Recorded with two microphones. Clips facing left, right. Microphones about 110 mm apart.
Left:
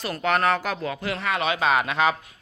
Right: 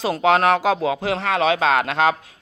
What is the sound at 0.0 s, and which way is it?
Speech, 90° right.